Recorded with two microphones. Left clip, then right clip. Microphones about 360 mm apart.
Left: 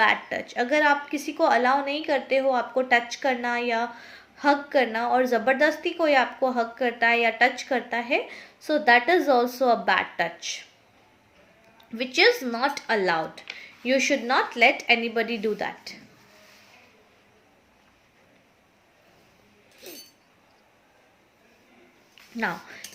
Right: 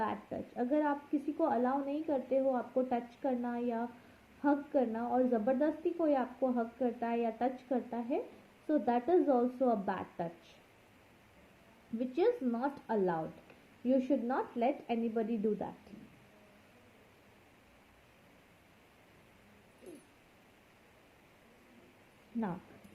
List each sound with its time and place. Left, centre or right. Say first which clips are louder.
0.0 s a woman's voice: left 15 dB; centre
12.2 s a woman's voice: left 12 dB; centre